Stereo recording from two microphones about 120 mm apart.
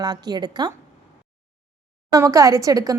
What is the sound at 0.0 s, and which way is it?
Speech, 35° right (ahead or behind).